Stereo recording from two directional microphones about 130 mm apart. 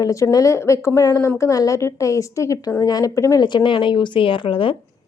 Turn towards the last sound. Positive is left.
turn(degrees=40)  # may be behind; listen again after turning